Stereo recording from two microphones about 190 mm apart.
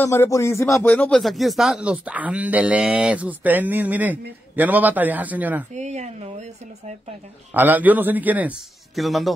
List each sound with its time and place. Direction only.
0.0 s speech: 15° left (ahead or behind)
0.8 s speech: 5° left (ahead or behind)
5.7 s speech: 40° right (ahead or behind)
7.5 s speech: 10° right (ahead or behind)